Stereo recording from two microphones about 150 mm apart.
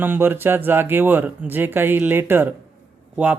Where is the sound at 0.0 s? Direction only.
15° right (ahead or behind).